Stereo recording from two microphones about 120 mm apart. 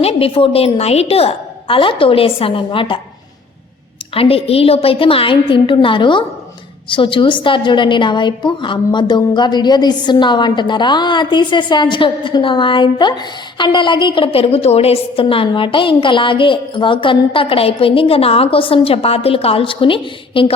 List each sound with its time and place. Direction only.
0.0 s a woman's voice: 55° left (ahead or behind)
4.1 s a woman's voice: 50° left (ahead or behind)